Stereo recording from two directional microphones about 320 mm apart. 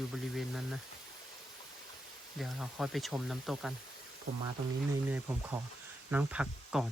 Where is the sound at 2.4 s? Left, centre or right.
Centre.